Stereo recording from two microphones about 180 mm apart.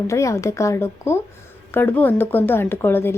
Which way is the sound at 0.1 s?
15° left (ahead or behind).